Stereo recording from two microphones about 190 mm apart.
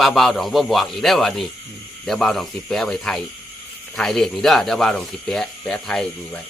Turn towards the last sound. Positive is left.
turn(degrees=5)  # may be behind; listen again after turning